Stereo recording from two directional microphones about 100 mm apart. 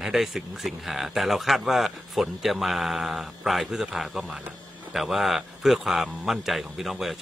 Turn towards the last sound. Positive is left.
turn(degrees=0)  # may be behind; listen again after turning